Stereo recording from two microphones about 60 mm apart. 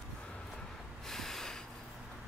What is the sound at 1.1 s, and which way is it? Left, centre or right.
Snort, centre.